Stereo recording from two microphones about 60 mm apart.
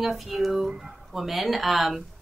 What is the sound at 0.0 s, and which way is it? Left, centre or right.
Speech, centre.